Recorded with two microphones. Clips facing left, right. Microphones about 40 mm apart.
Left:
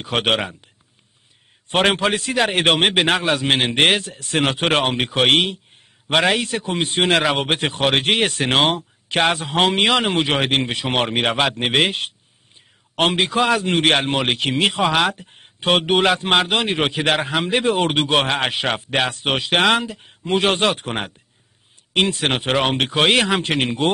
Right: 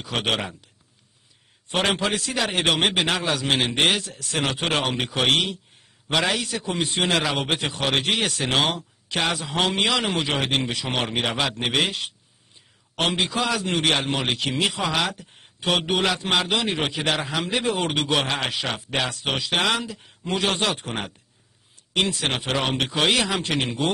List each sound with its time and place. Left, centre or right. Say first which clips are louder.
0.0 s a man's voice: left 5 dB; left
1.7 s a man's voice: left 5 dB; left
22.2 s a man's voice: left 5 dB; left